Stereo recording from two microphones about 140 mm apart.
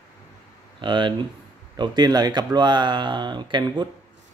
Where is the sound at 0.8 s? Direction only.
35° right (ahead or behind).